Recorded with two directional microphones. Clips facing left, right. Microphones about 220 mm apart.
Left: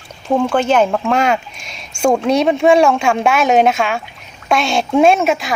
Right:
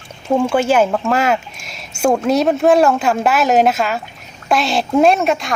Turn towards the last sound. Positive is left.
turn(degrees=0)  # may be behind; listen again after turning